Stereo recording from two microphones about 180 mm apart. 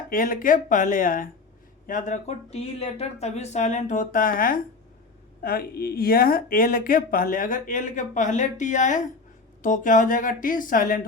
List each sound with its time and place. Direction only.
0.1 s speech: 50° left (ahead or behind)